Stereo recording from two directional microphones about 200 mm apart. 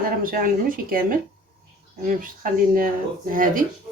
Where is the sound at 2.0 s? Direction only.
45° right (ahead or behind).